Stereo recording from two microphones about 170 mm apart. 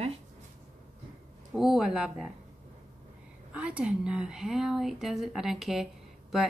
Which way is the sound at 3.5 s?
5° right (ahead or behind).